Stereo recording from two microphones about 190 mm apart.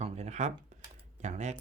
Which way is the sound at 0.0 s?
35° right (ahead or behind).